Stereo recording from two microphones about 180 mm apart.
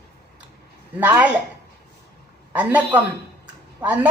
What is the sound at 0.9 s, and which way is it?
Speech, 10° right (ahead or behind).